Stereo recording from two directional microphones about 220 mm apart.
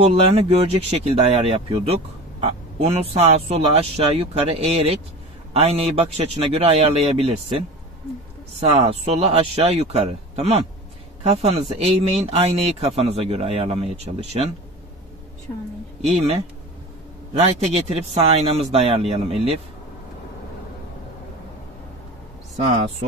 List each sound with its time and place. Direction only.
0.0 s speech: 25° right (ahead or behind)
17.3 s speech: 30° right (ahead or behind)